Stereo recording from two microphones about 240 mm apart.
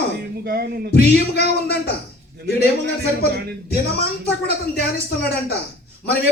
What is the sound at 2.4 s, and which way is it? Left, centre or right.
Speech, right.